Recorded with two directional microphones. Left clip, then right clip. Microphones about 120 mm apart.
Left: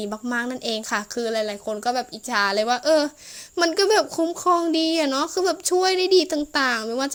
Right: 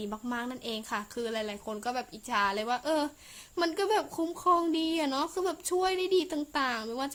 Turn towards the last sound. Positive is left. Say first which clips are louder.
# left 9 dB
turn(degrees=35)  # may be behind; listen again after turning